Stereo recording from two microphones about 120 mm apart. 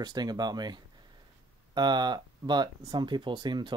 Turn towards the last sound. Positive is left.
turn(degrees=-40)  # may be behind; listen again after turning